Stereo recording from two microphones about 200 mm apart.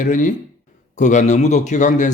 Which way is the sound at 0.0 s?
40° left (ahead or behind).